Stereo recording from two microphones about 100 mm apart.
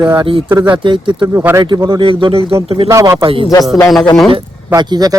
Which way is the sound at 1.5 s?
40° right (ahead or behind).